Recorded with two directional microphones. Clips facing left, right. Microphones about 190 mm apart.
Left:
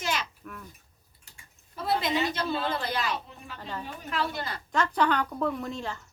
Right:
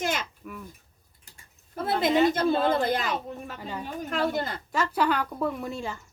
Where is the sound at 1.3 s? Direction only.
50° right (ahead or behind).